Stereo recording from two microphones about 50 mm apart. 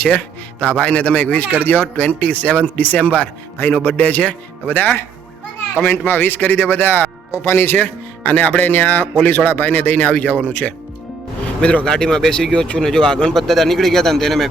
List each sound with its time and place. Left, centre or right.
0.0 s speech: left
6.1 s speech: left
7.3 s speech: left
7.8 s speech: left
11.6 s speech: left
11.9 s speech: centre